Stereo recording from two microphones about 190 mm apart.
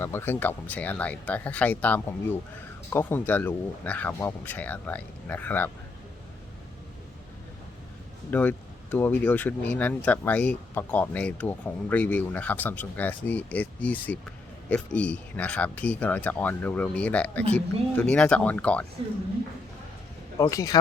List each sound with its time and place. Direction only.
0.0 s speech: 10° left (ahead or behind)
8.3 s speech: 10° left (ahead or behind)
20.4 s speech: 20° left (ahead or behind)